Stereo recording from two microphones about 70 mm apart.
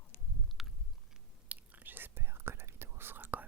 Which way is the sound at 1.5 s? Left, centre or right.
Right.